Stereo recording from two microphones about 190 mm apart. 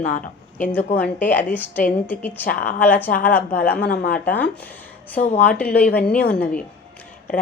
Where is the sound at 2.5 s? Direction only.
50° left (ahead or behind).